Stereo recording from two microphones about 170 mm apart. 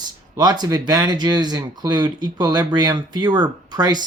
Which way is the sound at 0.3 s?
25° right (ahead or behind).